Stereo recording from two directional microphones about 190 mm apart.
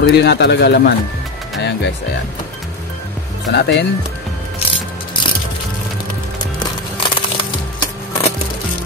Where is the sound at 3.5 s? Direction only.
65° left (ahead or behind).